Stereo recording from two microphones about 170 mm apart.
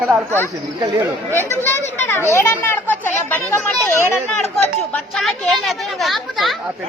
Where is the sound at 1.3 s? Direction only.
15° left (ahead or behind).